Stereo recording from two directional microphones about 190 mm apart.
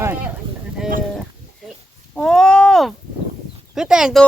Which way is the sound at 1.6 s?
Centre (ahead or behind).